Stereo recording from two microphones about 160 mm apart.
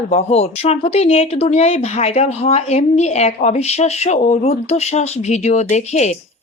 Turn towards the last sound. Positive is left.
turn(degrees=45)  # may be behind; listen again after turning